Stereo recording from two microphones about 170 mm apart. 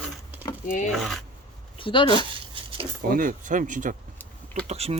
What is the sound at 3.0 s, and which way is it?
Speech, 55° right (ahead or behind).